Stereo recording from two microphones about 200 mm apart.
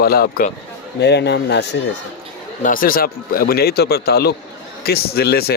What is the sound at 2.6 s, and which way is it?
A man's voice, 45° left (ahead or behind).